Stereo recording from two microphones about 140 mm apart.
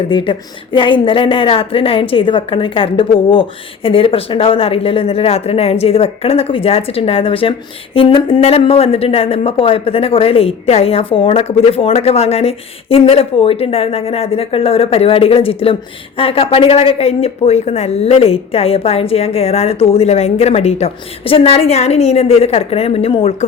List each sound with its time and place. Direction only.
0.1 s a woman's voice: 35° left (ahead or behind)